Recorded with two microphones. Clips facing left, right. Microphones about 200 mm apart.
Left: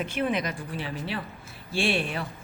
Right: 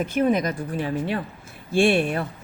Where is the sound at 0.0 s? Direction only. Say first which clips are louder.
Right 6 dB; 45° right (ahead or behind).